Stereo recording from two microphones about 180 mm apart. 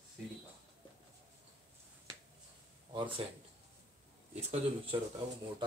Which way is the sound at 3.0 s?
30° right (ahead or behind).